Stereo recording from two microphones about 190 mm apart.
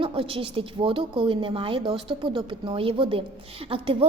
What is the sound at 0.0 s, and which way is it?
A woman's voice, 30° right (ahead or behind).